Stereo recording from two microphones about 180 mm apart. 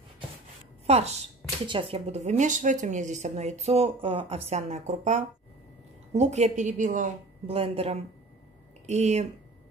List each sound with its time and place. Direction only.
0.8 s speech: 35° right (ahead or behind)